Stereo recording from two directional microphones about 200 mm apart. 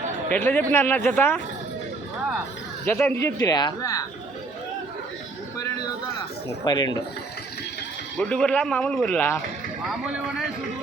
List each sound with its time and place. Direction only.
0.3 s speech: 10° left (ahead or behind)
2.8 s speech: 10° left (ahead or behind)
6.7 s speech: 20° left (ahead or behind)
8.2 s a man's voice: 5° left (ahead or behind)